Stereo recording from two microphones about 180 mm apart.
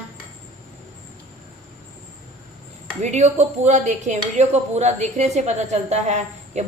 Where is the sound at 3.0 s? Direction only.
40° right (ahead or behind).